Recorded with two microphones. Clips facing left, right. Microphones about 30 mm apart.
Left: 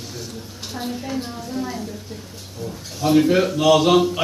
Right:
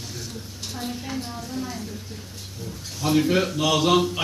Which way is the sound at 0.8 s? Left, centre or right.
Centre.